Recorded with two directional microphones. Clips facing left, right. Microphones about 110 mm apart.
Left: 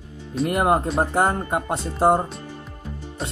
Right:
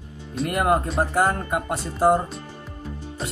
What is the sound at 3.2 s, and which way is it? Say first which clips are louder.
Music: left 1 dB; centre (ahead or behind).